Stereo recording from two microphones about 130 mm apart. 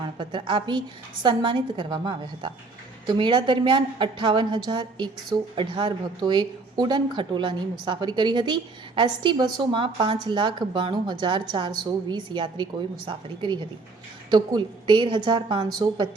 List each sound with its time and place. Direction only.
0.0 s a woman's voice: 40° right (ahead or behind)